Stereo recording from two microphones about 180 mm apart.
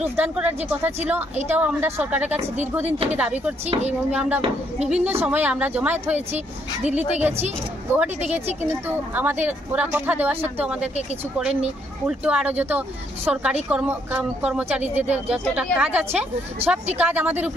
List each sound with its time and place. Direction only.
0.1 s speech: 10° right (ahead or behind)
2.3 s speech: 40° right (ahead or behind)
3.1 s speech: 5° right (ahead or behind)
3.6 s speech: 35° right (ahead or behind)
4.1 s speech: 5° right (ahead or behind)
8.8 s speech: 10° right (ahead or behind)